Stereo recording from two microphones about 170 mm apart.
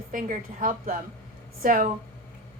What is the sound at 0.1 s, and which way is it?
A woman's voice, 50° right (ahead or behind).